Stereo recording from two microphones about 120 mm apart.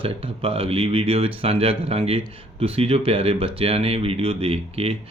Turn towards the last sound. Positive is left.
turn(degrees=-55)  # may be behind; listen again after turning